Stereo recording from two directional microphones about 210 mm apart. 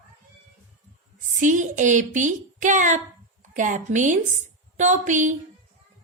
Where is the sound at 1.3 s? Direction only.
35° right (ahead or behind).